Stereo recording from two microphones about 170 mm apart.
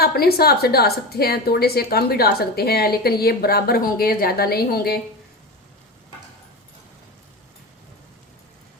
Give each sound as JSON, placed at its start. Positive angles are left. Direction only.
{"t": 0.0, "sound": "a woman's voice", "side_deg": 65}